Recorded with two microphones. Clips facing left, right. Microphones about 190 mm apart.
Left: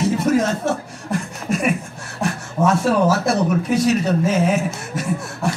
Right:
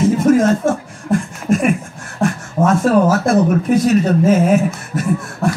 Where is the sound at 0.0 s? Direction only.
50° right (ahead or behind).